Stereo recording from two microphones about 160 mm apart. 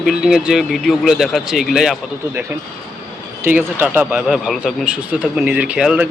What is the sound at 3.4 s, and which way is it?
Speech, 10° right (ahead or behind).